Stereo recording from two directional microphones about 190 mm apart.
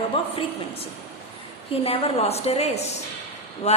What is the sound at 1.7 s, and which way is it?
A woman's voice, 30° left (ahead or behind).